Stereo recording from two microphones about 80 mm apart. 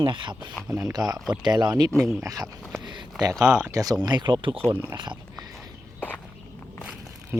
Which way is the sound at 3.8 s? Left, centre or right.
Right.